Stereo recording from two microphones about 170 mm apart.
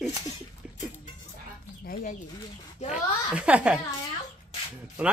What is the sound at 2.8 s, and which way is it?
Speech, 5° right (ahead or behind).